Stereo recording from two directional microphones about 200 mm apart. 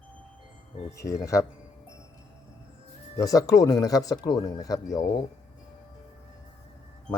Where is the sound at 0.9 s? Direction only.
15° left (ahead or behind).